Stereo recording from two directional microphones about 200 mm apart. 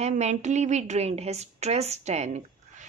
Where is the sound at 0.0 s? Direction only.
35° right (ahead or behind).